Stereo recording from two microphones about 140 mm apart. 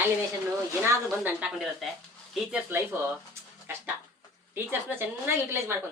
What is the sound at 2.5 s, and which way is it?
Speech, 15° right (ahead or behind).